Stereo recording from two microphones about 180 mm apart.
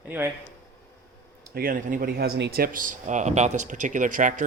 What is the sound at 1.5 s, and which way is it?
Speech, 50° right (ahead or behind).